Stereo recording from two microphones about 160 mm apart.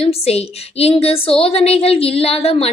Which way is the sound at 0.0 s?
40° left (ahead or behind).